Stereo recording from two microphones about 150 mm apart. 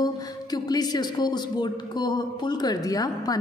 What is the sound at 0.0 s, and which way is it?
Speech, 25° left (ahead or behind).